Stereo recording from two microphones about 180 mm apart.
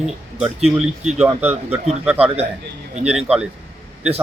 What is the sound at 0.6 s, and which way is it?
Speech, 35° right (ahead or behind).